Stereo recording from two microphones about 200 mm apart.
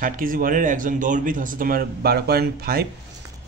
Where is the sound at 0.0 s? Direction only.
45° right (ahead or behind).